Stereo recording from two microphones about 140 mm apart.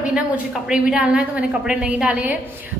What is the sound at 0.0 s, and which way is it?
A woman's voice, 5° right (ahead or behind).